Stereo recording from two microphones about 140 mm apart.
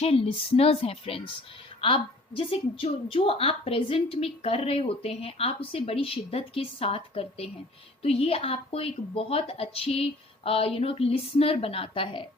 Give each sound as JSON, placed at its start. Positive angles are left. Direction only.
{"t": 0.0, "sound": "a woman's voice", "side_deg": 45}